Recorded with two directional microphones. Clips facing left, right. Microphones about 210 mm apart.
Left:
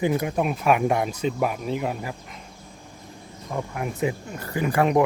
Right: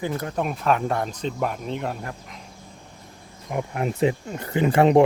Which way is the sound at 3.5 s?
20° right (ahead or behind).